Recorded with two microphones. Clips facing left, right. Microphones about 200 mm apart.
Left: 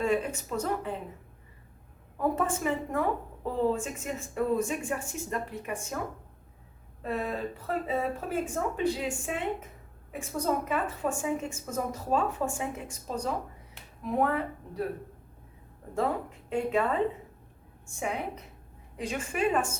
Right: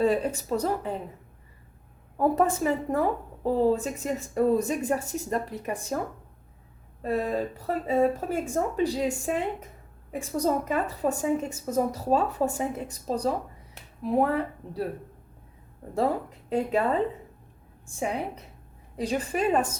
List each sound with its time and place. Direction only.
0.0 s a woman's voice: 35° right (ahead or behind)
2.1 s a woman's voice: 40° right (ahead or behind)
7.0 s a woman's voice: 35° right (ahead or behind)
16.5 s a woman's voice: 40° right (ahead or behind)
18.0 s a woman's voice: 35° right (ahead or behind)